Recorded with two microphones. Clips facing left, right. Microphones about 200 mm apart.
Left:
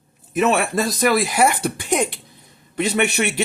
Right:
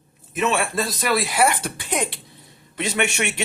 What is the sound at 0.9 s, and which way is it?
Speech, 45° left (ahead or behind).